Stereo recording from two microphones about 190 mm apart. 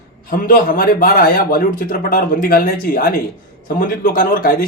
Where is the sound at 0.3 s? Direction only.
50° left (ahead or behind).